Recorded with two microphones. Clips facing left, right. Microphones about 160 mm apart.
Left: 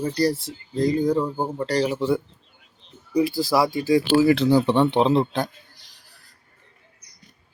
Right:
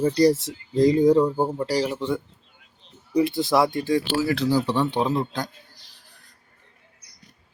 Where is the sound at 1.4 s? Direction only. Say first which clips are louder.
Even; 5° right (ahead or behind); by 4.8 s 25° left (ahead or behind).